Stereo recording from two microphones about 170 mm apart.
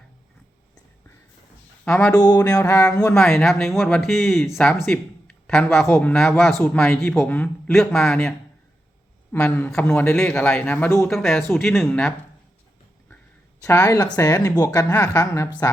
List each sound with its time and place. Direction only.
1.8 s speech: 5° left (ahead or behind)
2.1 s music: 20° left (ahead or behind)
3.2 s speech: centre (ahead or behind)
4.8 s a sound: 5° left (ahead or behind)
5.8 s speech: 10° left (ahead or behind)
9.3 s speech: 15° left (ahead or behind)
11.1 s speech: centre (ahead or behind)
13.7 s speech: 15° left (ahead or behind)
14.2 s music: 20° left (ahead or behind)